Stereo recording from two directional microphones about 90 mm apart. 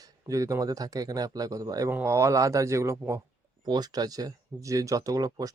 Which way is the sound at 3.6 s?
50° right (ahead or behind).